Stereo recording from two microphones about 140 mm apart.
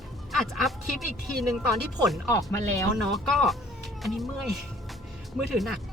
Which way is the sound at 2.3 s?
20° left (ahead or behind).